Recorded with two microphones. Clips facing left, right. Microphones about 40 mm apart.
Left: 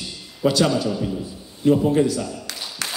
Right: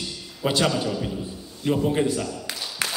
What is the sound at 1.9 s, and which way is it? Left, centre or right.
Speech, right.